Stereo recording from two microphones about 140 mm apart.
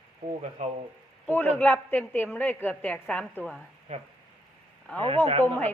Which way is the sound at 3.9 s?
50° right (ahead or behind).